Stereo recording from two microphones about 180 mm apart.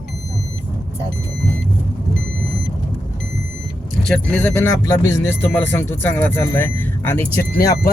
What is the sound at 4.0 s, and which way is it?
Speech, 5° left (ahead or behind).